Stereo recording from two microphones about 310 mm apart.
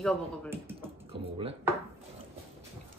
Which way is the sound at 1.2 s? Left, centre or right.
Centre.